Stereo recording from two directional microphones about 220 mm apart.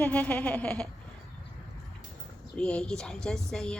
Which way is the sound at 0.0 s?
5° left (ahead or behind).